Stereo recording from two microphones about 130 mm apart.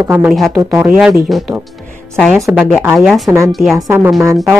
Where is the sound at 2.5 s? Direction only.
10° right (ahead or behind).